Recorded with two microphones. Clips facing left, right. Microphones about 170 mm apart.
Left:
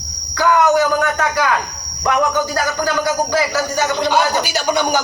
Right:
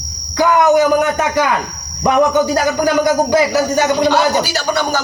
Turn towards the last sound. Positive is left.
turn(degrees=15)  # may be behind; listen again after turning